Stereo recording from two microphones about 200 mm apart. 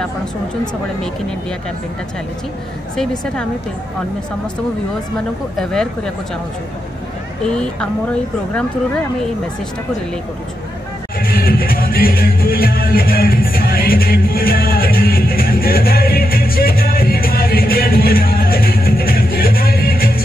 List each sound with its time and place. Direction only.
5.6 s speech: 5° left (ahead or behind)
7.4 s speech: 5° left (ahead or behind)
11.1 s music: 45° left (ahead or behind)